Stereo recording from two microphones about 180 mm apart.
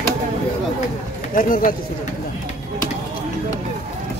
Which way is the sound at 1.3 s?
50° left (ahead or behind).